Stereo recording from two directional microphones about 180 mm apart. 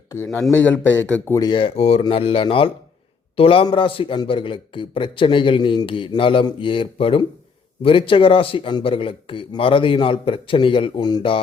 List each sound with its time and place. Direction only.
0.1 s speech: 15° left (ahead or behind)
1.4 s a man's voice: 25° left (ahead or behind)